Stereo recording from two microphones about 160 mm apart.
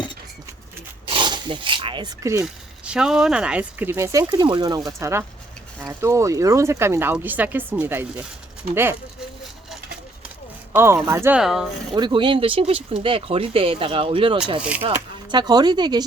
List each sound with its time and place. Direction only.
1.1 s speech: 30° right (ahead or behind)
2.8 s speech: 5° right (ahead or behind)
10.2 s a sound: 15° right (ahead or behind)
11.3 s speech: centre (ahead or behind)
11.9 s speech: 30° right (ahead or behind)
14.6 s speech: 10° right (ahead or behind)
14.8 s speech: 25° right (ahead or behind)